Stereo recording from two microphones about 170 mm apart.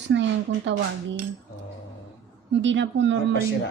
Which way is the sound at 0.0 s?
90° right.